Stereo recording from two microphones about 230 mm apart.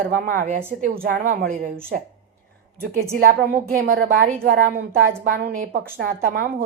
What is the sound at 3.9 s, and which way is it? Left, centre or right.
A woman's voice, right.